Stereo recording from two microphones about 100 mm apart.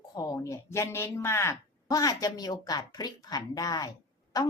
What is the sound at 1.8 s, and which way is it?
A woman's voice, 35° left (ahead or behind).